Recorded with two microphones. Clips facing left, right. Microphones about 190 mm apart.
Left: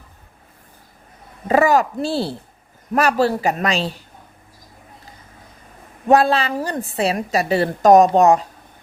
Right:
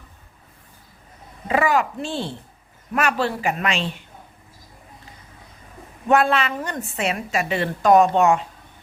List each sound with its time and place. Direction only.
1.5 s a woman's voice: 40° left (ahead or behind)
6.1 s a woman's voice: 35° left (ahead or behind)